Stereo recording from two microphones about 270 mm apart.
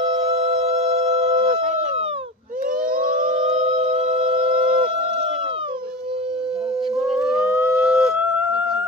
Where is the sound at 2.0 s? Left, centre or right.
Right.